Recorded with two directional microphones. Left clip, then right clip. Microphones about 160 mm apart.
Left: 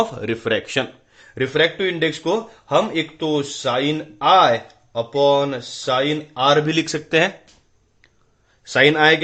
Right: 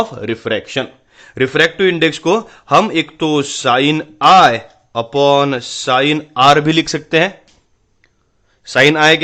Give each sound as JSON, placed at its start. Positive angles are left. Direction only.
{"t": 0.0, "sound": "speech", "side_deg": -20}
{"t": 1.1, "sound": "speech", "side_deg": -40}
{"t": 6.7, "sound": "speech", "side_deg": -35}
{"t": 7.1, "sound": "speech", "side_deg": -20}
{"t": 8.6, "sound": "speech", "side_deg": -25}